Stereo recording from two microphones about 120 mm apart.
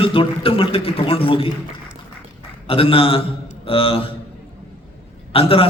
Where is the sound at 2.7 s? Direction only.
50° left (ahead or behind).